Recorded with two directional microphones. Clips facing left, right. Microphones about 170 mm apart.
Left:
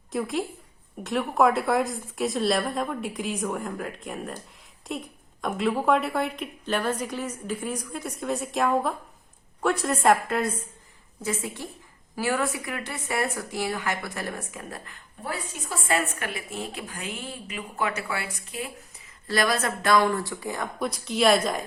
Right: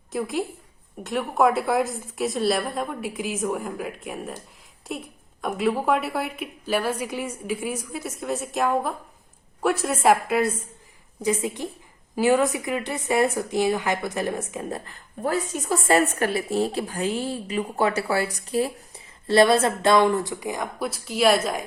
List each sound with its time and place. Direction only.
0.1 s a woman's voice: centre (ahead or behind)
11.2 s a woman's voice: 15° right (ahead or behind)
15.2 s a woman's voice: 45° right (ahead or behind); by 20.7 s 15° right (ahead or behind)
20.7 s a woman's voice: 5° right (ahead or behind)